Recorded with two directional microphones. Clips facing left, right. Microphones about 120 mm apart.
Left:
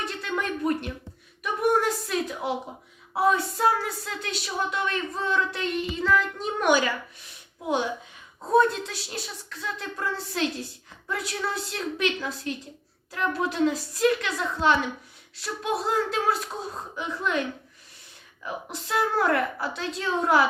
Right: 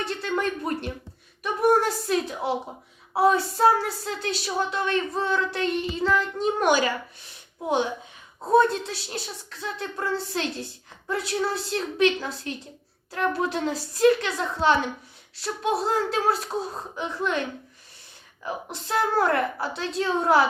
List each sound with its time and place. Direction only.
0.0 s a sound: 30° right (ahead or behind)
1.4 s a woman's voice: 35° right (ahead or behind)
8.5 s a woman's voice: 30° right (ahead or behind)
18.4 s a woman's voice: 30° right (ahead or behind)